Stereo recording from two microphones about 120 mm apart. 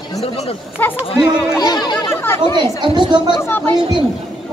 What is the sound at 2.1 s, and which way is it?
Chatter, 20° left (ahead or behind).